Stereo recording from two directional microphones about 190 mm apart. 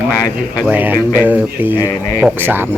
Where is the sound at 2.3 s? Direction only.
10° right (ahead or behind).